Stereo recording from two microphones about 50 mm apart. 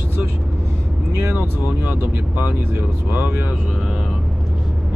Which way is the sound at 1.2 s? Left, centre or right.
Right.